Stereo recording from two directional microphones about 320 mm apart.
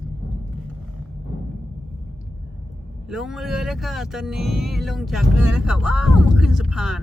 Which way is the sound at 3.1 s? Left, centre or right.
Centre.